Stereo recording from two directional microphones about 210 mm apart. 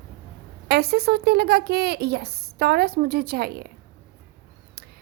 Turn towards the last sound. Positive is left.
turn(degrees=-45)  # may be behind; listen again after turning